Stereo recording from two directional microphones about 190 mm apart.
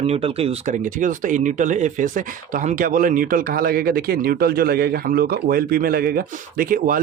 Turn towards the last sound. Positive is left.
turn(degrees=-50)  # may be behind; listen again after turning